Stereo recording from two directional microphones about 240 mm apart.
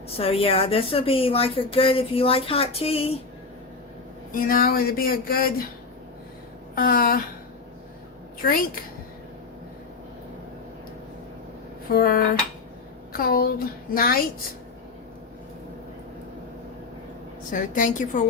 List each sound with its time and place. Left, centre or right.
0.2 s speech: left
4.3 s speech: left
6.7 s speech: left
11.9 s speech: left
17.5 s speech: left